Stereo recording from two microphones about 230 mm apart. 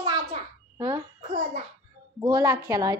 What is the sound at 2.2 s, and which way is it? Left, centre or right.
Speech, centre.